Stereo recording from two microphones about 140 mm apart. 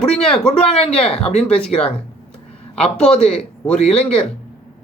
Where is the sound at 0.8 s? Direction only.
45° left (ahead or behind).